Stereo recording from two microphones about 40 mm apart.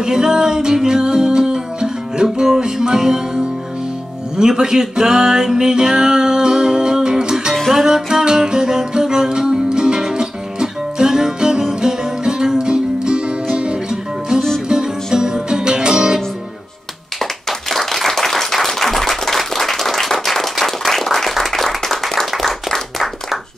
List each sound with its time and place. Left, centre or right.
0.0 s music: centre
7.5 s music: centre
7.8 s music: centre
15.0 s music: centre
17.2 s clapping: centre
20.5 s applause: centre